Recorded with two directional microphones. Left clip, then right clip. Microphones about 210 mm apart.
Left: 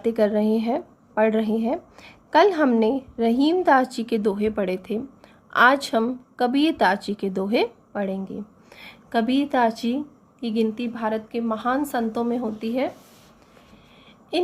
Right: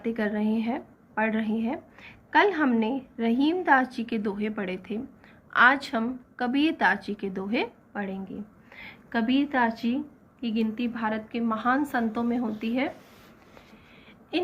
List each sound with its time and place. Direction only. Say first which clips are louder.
0.0 s a woman's voice: left 8 dB; 60° left (ahead or behind)